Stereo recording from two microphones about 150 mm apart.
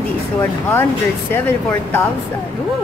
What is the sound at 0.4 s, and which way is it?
Speech, 15° left (ahead or behind).